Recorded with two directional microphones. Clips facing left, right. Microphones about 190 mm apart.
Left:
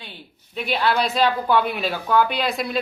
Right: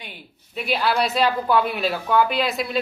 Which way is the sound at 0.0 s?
10° right (ahead or behind).